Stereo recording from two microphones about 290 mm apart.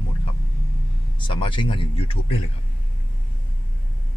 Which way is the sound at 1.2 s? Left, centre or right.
Centre.